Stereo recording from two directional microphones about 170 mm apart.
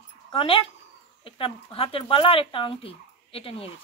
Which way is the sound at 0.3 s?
30° left (ahead or behind).